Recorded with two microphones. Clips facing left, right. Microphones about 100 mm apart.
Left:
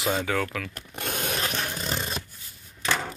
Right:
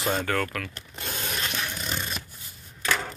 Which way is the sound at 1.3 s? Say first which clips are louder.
Left 2 dB; 40° left (ahead or behind).